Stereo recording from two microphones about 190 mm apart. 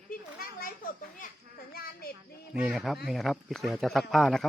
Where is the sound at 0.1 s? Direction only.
50° left (ahead or behind).